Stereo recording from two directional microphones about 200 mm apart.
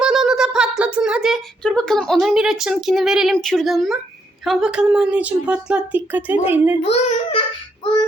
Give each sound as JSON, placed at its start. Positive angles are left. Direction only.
{"t": 0.0, "sound": "a sound", "side_deg": 0}
{"t": 4.4, "sound": "a woman's voice", "side_deg": -5}
{"t": 6.8, "sound": "a child's voice", "side_deg": 30}